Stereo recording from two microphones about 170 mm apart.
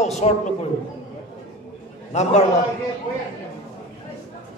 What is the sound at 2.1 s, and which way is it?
Speech, 40° left (ahead or behind).